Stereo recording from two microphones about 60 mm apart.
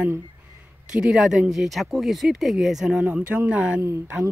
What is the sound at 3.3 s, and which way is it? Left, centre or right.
Speech, right.